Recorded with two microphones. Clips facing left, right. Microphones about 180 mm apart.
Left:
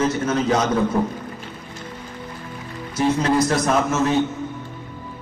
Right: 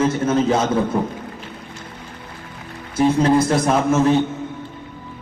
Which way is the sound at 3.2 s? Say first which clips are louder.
Right 3 dB; 30° right (ahead or behind).